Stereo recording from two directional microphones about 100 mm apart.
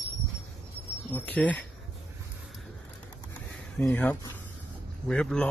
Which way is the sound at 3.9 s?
15° left (ahead or behind).